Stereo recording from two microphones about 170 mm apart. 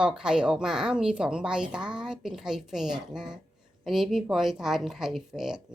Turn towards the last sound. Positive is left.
turn(degrees=-5)  # may be behind; listen again after turning